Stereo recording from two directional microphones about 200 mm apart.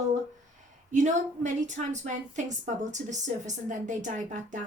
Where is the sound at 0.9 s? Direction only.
35° right (ahead or behind).